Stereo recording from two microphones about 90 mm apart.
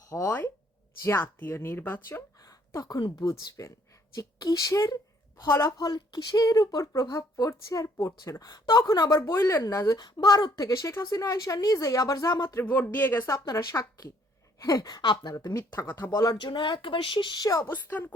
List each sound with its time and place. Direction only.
0.3 s speech: 20° left (ahead or behind)
2.4 s a sound: 40° left (ahead or behind)
3.2 s a woman's voice: 45° left (ahead or behind)
9.3 s a woman's voice: 30° left (ahead or behind); by 10.6 s 50° left (ahead or behind)
10.6 s speech: 40° left (ahead or behind)
12.5 s speech: 20° left (ahead or behind)
13.4 s a woman's voice: 45° left (ahead or behind)
15.4 s speech: 35° left (ahead or behind)
15.9 s speech: 20° left (ahead or behind)
16.1 s speech: 40° left (ahead or behind)
17.7 s speech: 25° left (ahead or behind)